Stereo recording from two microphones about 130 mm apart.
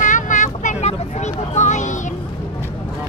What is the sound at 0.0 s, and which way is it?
Vehicle, 75° left (ahead or behind).